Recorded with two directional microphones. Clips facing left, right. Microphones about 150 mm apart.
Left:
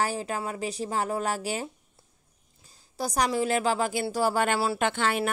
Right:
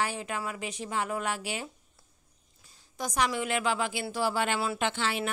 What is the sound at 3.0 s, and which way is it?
A woman's voice, 35° left (ahead or behind).